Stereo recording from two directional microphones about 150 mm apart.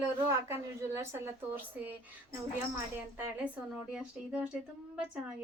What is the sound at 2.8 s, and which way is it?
A woman's voice, 15° right (ahead or behind).